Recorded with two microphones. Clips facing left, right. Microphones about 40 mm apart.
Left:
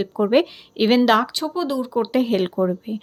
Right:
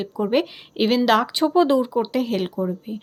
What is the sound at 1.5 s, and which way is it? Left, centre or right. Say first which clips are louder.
Speech: right 8 dB; right.